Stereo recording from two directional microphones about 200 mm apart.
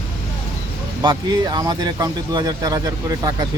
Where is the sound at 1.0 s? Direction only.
20° right (ahead or behind).